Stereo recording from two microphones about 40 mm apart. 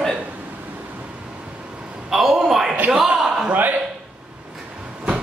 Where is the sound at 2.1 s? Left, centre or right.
Centre.